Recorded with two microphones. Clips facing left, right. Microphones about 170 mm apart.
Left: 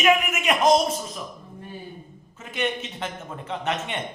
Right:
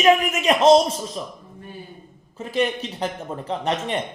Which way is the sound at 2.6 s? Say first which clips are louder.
Right 5 dB; 35° right (ahead or behind).